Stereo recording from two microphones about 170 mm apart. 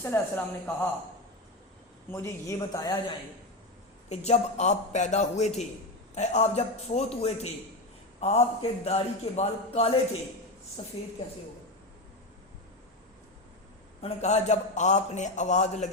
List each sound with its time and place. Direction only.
0.0 s a woman's voice: 10° left (ahead or behind)
2.1 s a man's voice: 15° left (ahead or behind)
4.1 s a man's voice: 40° left (ahead or behind)
14.0 s a man's voice: 40° left (ahead or behind)